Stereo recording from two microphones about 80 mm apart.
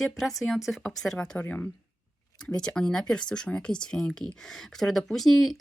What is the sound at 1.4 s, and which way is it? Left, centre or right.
Speech, left.